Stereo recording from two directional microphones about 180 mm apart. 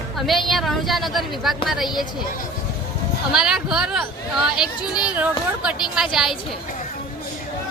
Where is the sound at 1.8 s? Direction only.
25° left (ahead or behind).